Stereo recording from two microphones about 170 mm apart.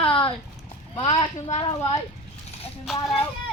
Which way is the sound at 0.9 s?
40° left (ahead or behind).